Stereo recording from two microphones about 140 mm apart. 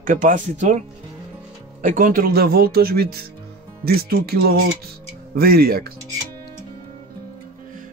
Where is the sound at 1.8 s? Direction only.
80° right.